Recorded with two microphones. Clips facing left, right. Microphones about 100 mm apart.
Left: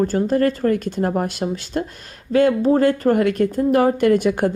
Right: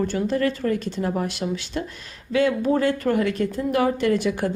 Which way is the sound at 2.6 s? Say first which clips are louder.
Left 5 dB; 35° left (ahead or behind).